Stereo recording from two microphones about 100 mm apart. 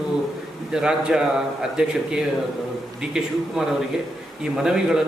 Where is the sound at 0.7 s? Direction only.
5° right (ahead or behind).